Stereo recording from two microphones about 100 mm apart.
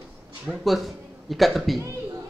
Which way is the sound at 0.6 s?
Centre (ahead or behind).